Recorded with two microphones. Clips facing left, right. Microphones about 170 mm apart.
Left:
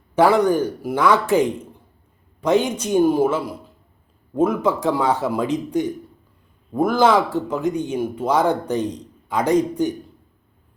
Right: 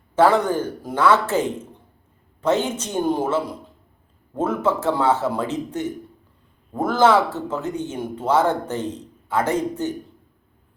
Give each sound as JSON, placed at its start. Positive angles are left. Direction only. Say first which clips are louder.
{"t": 0.2, "sound": "a man's voice", "louder": "left 2 dB", "side_deg": 15}